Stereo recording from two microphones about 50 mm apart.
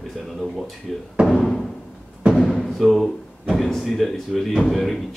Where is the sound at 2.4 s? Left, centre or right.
Centre.